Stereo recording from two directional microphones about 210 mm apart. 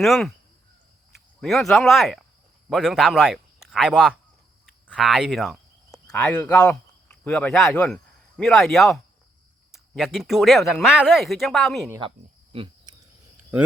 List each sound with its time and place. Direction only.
0.0 s speech: centre (ahead or behind)
1.4 s speech: centre (ahead or behind)
11.9 s speech: 20° right (ahead or behind)
12.5 s cricket: 25° right (ahead or behind)